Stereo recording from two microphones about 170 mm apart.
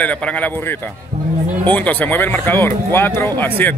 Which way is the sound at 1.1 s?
40° right (ahead or behind).